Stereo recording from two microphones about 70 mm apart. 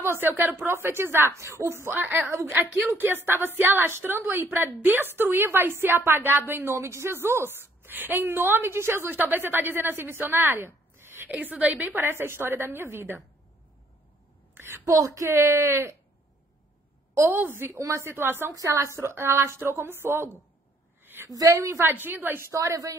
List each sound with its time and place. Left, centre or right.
0.0 s a woman's voice: right
11.3 s a woman's voice: right
12.0 s a woman's voice: right
14.5 s a sound: right
14.9 s speech: right
15.3 s a woman's voice: right
17.3 s a woman's voice: right
17.7 s speech: right
18.0 s a woman's voice: right
18.5 s a woman's voice: right
18.9 s a woman's voice: right
21.0 s a sound: right
21.4 s speech: right
21.8 s a woman's voice: right